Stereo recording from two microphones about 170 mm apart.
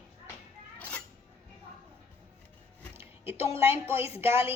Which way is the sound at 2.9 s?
15° right (ahead or behind).